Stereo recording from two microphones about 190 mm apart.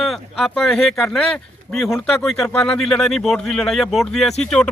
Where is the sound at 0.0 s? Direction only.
Centre (ahead or behind).